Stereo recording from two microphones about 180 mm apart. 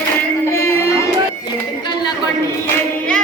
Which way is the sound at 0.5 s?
15° left (ahead or behind).